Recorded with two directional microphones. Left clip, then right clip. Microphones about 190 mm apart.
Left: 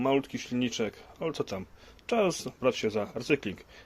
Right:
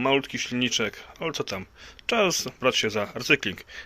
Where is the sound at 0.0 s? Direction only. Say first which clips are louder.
Right 4 dB; 5° left (ahead or behind).